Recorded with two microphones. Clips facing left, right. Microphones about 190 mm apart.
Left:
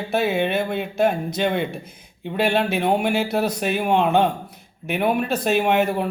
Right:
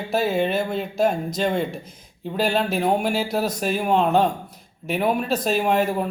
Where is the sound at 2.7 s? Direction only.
Centre (ahead or behind).